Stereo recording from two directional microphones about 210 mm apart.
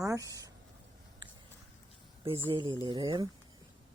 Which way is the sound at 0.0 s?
15° right (ahead or behind).